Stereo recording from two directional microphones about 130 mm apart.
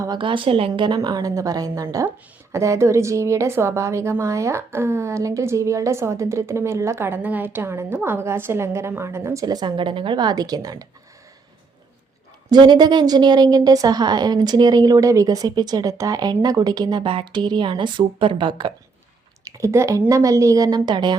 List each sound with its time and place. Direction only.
0.2 s a woman's voice: 40° right (ahead or behind)
0.7 s a woman's voice: 30° right (ahead or behind)
12.5 s a woman's voice: 35° right (ahead or behind)
19.5 s a woman's voice: 25° right (ahead or behind)